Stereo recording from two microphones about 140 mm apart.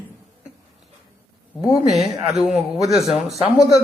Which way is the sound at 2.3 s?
5° right (ahead or behind).